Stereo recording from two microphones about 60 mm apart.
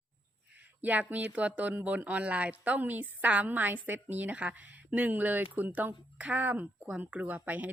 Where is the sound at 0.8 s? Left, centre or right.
Right.